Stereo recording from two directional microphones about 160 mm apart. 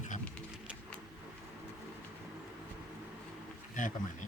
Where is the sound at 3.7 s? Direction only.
55° left (ahead or behind).